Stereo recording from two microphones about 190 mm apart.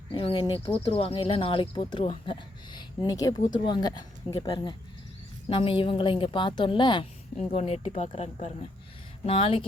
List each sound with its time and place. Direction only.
0.1 s a woman's voice: 25° left (ahead or behind)